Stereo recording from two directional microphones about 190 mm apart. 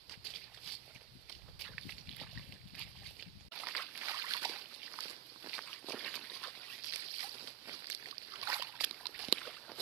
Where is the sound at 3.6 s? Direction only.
5° right (ahead or behind).